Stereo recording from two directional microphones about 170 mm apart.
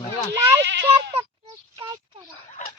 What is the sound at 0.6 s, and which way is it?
Bleat, 90° right.